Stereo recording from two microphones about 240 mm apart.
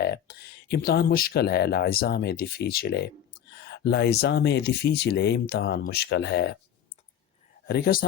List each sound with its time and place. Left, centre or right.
0.0 s speech: left
7.7 s a man's voice: left